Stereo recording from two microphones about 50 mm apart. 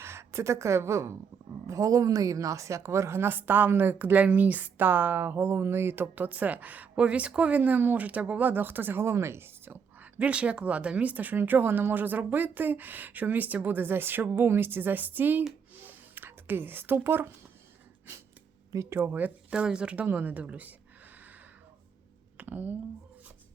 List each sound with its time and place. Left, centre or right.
0.0 s speech: right
1.6 s speech: right
3.2 s a woman's voice: right
6.1 s speech: right
7.0 s speech: right
10.2 s speech: right
15.7 s whispering: right
18.7 s speech: right
19.0 s speech: right
19.5 s speech: centre
20.1 s speech: right
22.4 s speech: right